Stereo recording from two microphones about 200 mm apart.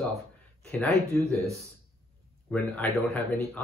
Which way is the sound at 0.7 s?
5° left (ahead or behind).